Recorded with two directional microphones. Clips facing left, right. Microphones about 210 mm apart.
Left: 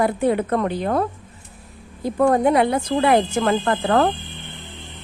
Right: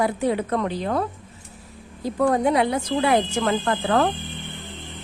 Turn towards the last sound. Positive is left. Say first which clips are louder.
# left 2 dB
turn(degrees=50)  # may be behind; listen again after turning